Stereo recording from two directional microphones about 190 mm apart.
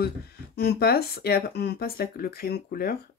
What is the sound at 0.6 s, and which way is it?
Speech, 55° left (ahead or behind).